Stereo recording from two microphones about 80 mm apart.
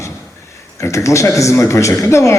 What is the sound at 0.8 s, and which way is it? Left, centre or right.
A man's voice, left.